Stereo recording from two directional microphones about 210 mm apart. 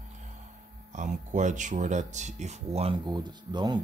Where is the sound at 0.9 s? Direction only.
35° right (ahead or behind).